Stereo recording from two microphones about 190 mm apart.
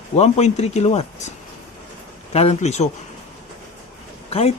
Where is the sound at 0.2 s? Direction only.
35° left (ahead or behind).